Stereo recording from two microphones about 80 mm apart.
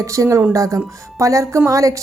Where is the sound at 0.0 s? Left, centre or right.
Right.